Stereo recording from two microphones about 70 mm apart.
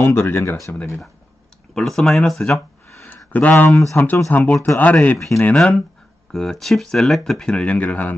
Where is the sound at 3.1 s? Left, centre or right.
Left.